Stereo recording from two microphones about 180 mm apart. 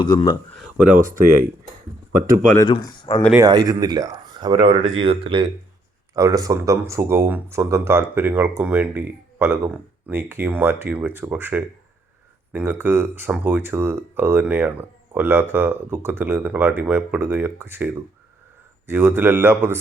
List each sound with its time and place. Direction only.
0.0 s speech: 25° left (ahead or behind)
0.5 s a sound: 5° right (ahead or behind)
2.6 s speech: 25° left (ahead or behind)
3.3 s speech: 20° right (ahead or behind)
6.1 s speech: 20° right (ahead or behind)